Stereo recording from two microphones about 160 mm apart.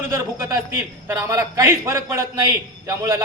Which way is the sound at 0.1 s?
15° right (ahead or behind).